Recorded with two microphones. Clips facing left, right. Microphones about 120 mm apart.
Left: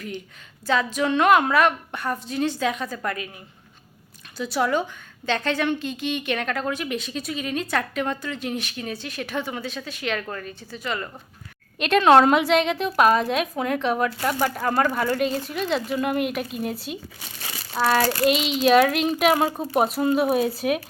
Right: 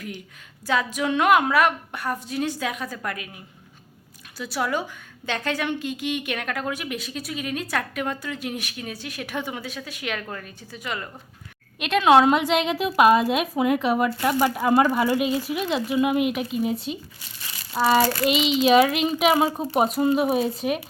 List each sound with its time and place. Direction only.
0.7 s a woman's voice: 10° right (ahead or behind)
4.4 s a woman's voice: 5° right (ahead or behind)
17.2 s speech: 85° left
17.7 s a woman's voice: 10° right (ahead or behind)
18.3 s a woman's voice: centre (ahead or behind)